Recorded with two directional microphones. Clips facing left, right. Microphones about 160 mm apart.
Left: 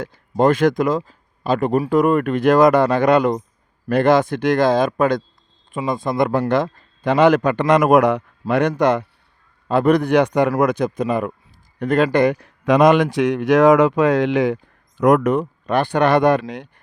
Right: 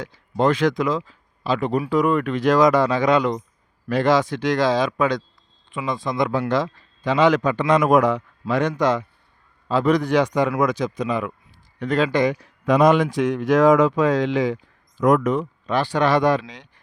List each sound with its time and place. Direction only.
0.0 s a man's voice: 50° left (ahead or behind)